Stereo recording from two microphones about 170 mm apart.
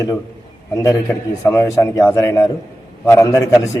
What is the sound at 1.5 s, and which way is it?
A man's voice, 15° left (ahead or behind).